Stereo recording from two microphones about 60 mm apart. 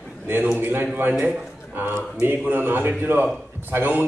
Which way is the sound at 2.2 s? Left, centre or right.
Right.